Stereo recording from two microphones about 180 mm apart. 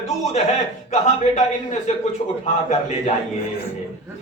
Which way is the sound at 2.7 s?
35° left (ahead or behind).